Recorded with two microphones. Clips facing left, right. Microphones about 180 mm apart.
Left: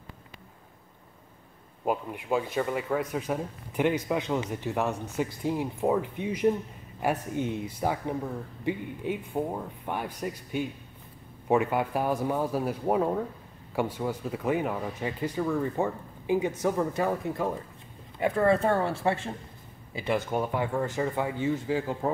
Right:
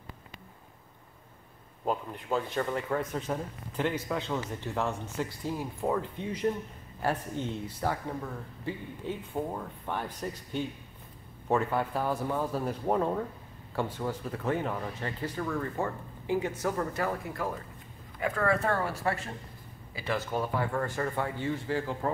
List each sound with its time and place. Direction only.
1.9 s speech: 10° left (ahead or behind)